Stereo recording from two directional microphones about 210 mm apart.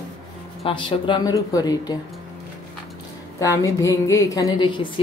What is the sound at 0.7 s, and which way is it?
A woman's voice, 25° left (ahead or behind).